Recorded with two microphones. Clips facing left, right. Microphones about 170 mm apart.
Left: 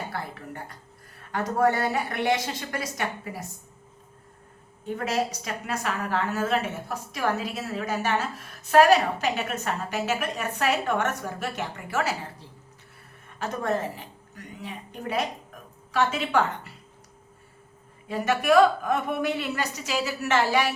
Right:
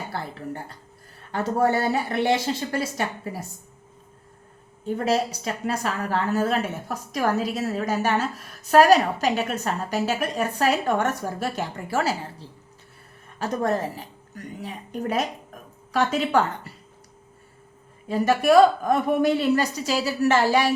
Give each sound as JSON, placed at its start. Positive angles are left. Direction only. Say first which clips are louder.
{"t": 0.1, "sound": "a woman's voice", "louder": "right 3 dB", "side_deg": -30}
{"t": 4.9, "sound": "a woman's voice", "louder": "right 4 dB", "side_deg": -35}
{"t": 18.1, "sound": "a woman's voice", "louder": "right 3 dB", "side_deg": -35}